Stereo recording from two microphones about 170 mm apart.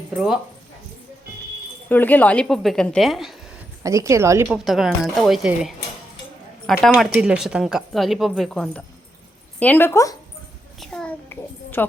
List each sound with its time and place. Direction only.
1.9 s speech: 10° left (ahead or behind)
3.8 s a woman's voice: 15° right (ahead or behind)
4.4 s speech: 5° right (ahead or behind); by 10.2 s 15° left (ahead or behind)
10.8 s a child's voice: 5° left (ahead or behind)